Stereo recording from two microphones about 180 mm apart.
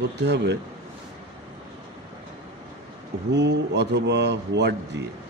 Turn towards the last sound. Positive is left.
turn(degrees=-70)  # may be behind; listen again after turning